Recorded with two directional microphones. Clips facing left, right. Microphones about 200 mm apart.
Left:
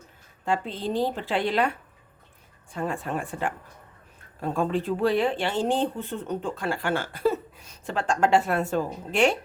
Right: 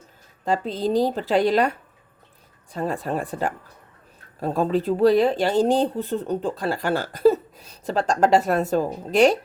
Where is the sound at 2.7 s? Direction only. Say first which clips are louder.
Right 4 dB; 35° right (ahead or behind).